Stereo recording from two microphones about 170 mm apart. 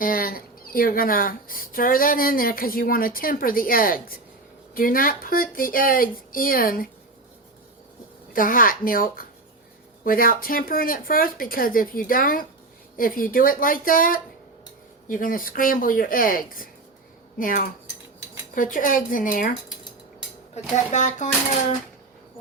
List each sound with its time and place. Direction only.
0.0 s speech: 60° left (ahead or behind)
8.3 s speech: 55° left (ahead or behind)
20.6 s speech: 40° left (ahead or behind)